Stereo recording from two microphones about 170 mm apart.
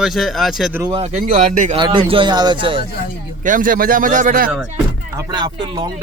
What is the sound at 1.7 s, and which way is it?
Speech, 30° right (ahead or behind).